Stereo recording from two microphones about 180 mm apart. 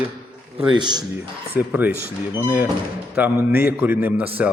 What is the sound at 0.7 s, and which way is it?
Speech, 25° right (ahead or behind).